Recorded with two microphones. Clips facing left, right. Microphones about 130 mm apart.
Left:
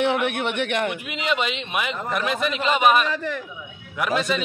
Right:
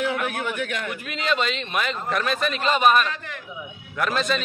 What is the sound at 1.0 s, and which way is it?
A man's voice, 15° left (ahead or behind).